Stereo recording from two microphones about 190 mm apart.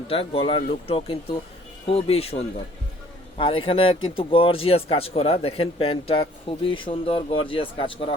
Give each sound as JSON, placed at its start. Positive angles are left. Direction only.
{"t": 0.1, "sound": "speech", "side_deg": 30}